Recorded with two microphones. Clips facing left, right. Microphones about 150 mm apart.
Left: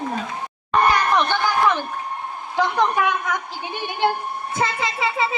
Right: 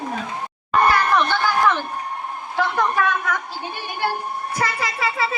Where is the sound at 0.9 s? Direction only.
15° left (ahead or behind).